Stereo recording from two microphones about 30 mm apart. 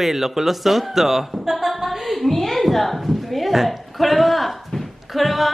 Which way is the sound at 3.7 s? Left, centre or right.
Centre.